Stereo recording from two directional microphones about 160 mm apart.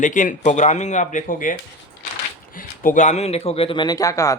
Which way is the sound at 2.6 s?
55° left (ahead or behind).